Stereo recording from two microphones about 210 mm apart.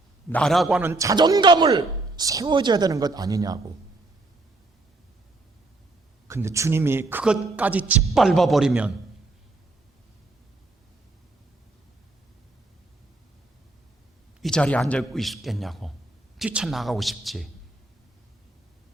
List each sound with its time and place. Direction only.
0.3 s a man's voice: 5° left (ahead or behind); by 3.6 s 15° right (ahead or behind)
6.2 s a man's voice: 15° right (ahead or behind)
14.4 s a man's voice: 5° left (ahead or behind)